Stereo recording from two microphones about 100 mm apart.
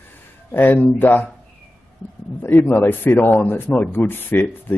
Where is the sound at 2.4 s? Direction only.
20° left (ahead or behind).